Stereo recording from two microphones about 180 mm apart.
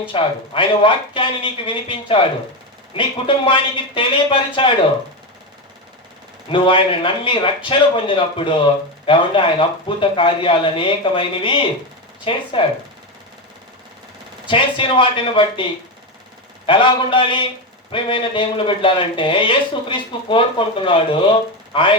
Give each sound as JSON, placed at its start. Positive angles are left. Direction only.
{"t": 0.1, "sound": "speech", "side_deg": 30}
{"t": 6.5, "sound": "speech", "side_deg": 30}
{"t": 14.4, "sound": "speech", "side_deg": 30}
{"t": 16.6, "sound": "speech", "side_deg": 25}